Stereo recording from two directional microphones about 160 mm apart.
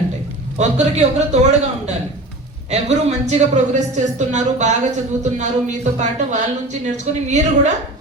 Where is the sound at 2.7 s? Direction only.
45° right (ahead or behind).